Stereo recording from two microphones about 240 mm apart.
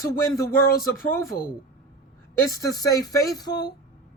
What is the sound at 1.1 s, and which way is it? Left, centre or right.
Speech, centre.